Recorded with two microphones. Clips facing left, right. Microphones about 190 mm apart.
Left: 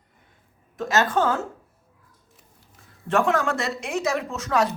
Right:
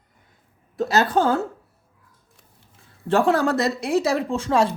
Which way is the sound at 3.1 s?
35° right (ahead or behind).